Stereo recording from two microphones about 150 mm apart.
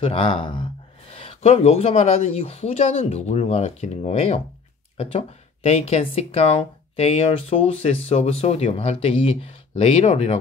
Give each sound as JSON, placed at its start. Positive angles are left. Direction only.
{"t": 0.1, "sound": "speech", "side_deg": 35}